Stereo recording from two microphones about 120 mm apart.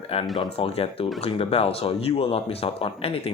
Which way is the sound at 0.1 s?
55° left (ahead or behind).